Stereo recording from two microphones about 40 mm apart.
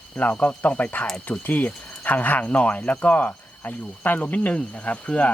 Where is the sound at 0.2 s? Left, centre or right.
Left.